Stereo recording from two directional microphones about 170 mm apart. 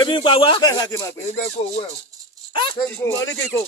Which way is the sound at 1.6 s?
35° left (ahead or behind).